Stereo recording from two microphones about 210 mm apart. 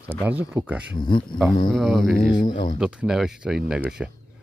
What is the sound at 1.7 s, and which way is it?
Speech, centre (ahead or behind).